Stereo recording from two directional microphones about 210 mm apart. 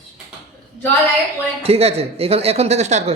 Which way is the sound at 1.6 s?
30° right (ahead or behind).